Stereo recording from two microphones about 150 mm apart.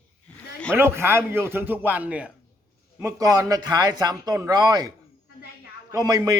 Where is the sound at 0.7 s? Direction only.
15° right (ahead or behind).